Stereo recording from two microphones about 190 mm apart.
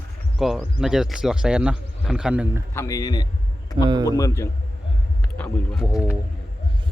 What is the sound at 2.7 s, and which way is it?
A man's voice, 15° left (ahead or behind).